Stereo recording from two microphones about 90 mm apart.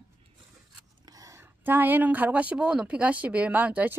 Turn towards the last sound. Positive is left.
turn(degrees=-20)  # may be behind; listen again after turning